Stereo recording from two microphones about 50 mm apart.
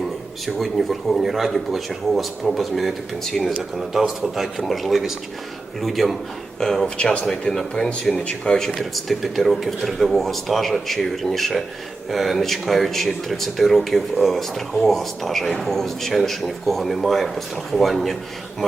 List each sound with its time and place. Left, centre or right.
0.4 s speech: centre
6.8 s speech: left
7.5 s speech: centre
8.1 s speech: centre
8.8 s speech: centre